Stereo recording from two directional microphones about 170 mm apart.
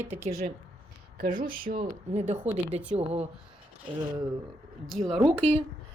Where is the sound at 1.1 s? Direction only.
55° right (ahead or behind); by 3.3 s 35° right (ahead or behind).